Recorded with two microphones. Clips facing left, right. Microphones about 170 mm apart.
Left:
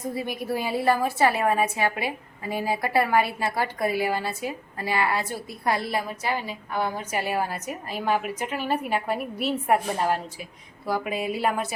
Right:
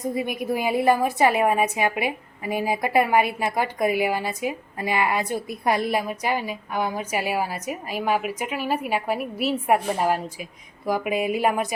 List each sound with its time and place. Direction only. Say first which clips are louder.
0.1 s a woman's voice: right 2 dB; 15° right (ahead or behind)